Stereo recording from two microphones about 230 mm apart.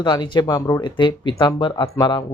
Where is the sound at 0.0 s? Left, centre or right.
Centre.